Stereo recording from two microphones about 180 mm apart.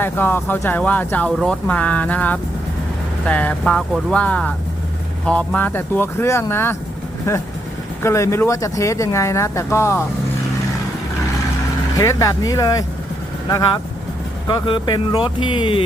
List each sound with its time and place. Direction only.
0.0 s speech: 10° left (ahead or behind)
11.9 s speech: 15° left (ahead or behind)
14.4 s speech: 25° left (ahead or behind)